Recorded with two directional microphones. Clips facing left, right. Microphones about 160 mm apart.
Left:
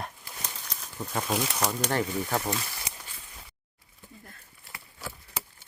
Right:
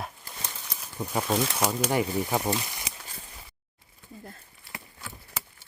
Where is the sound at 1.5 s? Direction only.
10° right (ahead or behind).